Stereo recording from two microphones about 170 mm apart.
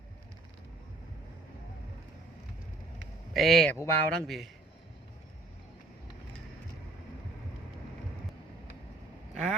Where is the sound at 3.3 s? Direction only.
Centre (ahead or behind).